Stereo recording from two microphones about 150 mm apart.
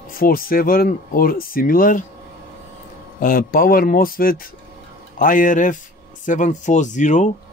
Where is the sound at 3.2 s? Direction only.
70° left (ahead or behind); by 7.3 s 55° left (ahead or behind).